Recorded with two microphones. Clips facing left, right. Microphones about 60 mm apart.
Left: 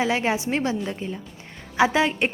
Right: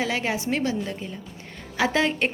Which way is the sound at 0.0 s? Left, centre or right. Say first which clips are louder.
Left 3 dB; left.